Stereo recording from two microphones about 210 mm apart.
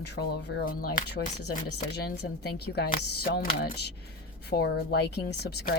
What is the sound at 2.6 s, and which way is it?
Speech, 50° left (ahead or behind).